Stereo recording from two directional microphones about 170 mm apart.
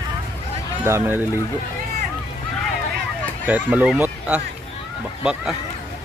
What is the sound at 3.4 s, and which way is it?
Speech, 10° right (ahead or behind).